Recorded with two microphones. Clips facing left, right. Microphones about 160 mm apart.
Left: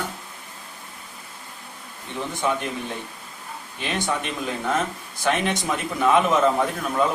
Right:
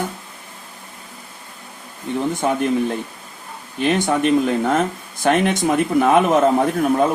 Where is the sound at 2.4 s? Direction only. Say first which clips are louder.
Right 2 dB; 50° right (ahead or behind).